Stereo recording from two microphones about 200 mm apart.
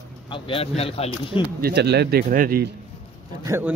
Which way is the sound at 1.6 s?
55° right (ahead or behind).